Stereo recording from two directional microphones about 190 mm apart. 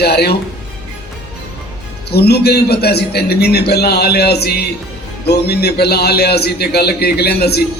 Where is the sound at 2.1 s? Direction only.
60° left (ahead or behind).